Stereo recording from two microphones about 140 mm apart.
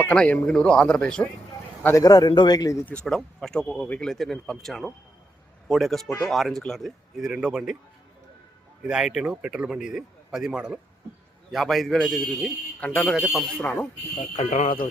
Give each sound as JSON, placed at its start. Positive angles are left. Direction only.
{"t": 0.0, "sound": "speech", "side_deg": 10}
{"t": 1.8, "sound": "a man's voice", "side_deg": 20}
{"t": 2.8, "sound": "a man's voice", "side_deg": 5}
{"t": 8.8, "sound": "a man's voice", "side_deg": -5}
{"t": 13.1, "sound": "speech", "side_deg": -10}
{"t": 13.6, "sound": "speech", "side_deg": 10}
{"t": 14.2, "sound": "speech", "side_deg": 50}